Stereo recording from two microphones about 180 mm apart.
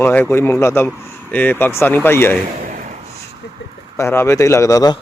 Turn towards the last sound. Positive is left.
turn(degrees=20)  # may be behind; listen again after turning